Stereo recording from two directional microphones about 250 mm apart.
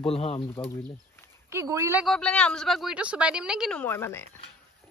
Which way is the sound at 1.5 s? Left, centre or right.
Centre.